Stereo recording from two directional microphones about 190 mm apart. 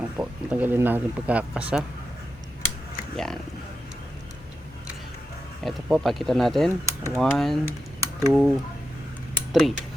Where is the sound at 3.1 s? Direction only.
Centre (ahead or behind).